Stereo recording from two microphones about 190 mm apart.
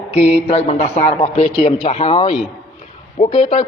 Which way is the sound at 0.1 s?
35° left (ahead or behind).